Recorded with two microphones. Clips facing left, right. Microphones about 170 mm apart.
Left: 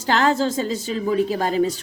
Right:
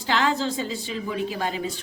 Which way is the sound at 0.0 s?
45° left (ahead or behind).